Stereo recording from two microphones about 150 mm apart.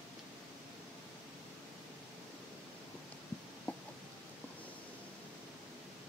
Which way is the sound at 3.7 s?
10° left (ahead or behind).